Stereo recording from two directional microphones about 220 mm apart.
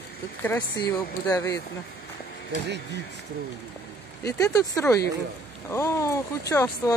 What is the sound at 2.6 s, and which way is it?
Speech, 50° right (ahead or behind).